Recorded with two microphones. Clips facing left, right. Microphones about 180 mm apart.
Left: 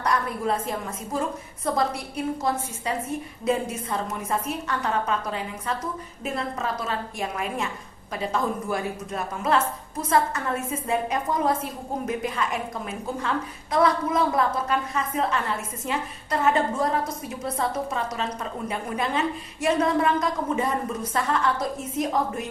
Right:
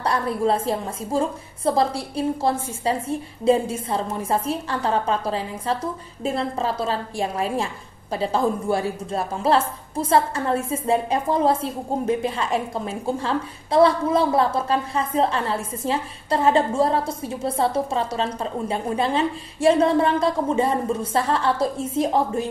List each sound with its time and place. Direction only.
0.0 s a woman's voice: 30° right (ahead or behind)